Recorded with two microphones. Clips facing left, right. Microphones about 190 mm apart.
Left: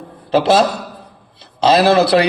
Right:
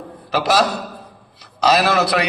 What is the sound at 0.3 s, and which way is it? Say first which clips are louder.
Speech: left 5 dB; 25° left (ahead or behind).